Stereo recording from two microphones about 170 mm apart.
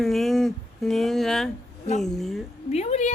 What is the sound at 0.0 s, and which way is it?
Speech, centre (ahead or behind).